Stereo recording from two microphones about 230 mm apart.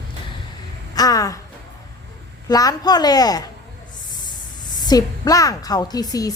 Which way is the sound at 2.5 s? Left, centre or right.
Centre.